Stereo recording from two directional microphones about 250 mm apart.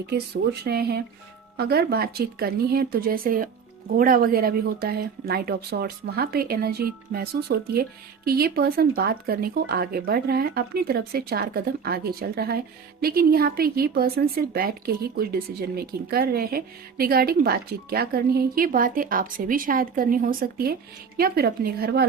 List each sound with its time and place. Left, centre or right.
0.6 s speech: right